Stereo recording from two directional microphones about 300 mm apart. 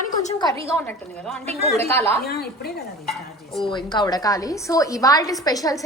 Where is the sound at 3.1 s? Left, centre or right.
Centre.